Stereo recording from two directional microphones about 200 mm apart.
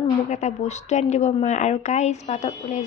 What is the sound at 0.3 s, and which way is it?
Speech, 35° left (ahead or behind).